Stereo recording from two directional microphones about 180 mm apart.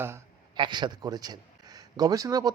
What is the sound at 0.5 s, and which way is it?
Speech, 25° right (ahead or behind).